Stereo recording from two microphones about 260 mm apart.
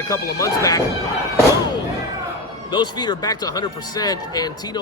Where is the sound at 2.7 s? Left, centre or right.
Centre.